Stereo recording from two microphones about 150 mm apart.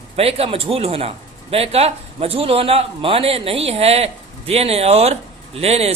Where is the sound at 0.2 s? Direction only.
40° right (ahead or behind).